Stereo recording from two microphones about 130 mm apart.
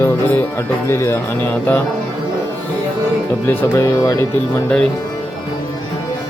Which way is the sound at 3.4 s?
25° left (ahead or behind).